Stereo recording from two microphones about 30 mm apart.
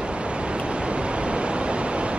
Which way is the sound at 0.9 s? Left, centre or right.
Right.